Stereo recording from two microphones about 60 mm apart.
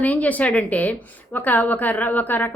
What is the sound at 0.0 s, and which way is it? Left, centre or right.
A woman's voice, left.